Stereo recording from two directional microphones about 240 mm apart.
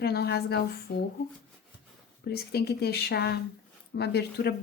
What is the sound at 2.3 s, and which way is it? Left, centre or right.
Speech, left.